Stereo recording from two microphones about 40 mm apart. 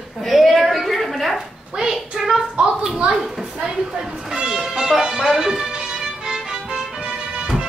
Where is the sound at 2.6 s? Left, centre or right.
Right.